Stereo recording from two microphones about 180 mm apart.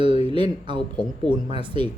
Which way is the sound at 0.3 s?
25° right (ahead or behind).